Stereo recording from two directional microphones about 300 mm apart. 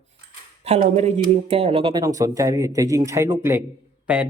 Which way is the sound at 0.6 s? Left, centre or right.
Right.